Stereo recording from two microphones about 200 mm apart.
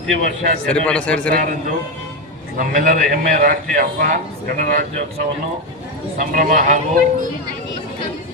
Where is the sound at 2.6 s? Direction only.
40° right (ahead or behind).